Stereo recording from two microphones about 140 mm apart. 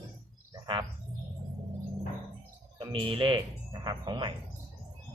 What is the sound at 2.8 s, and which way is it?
Speech, 40° right (ahead or behind).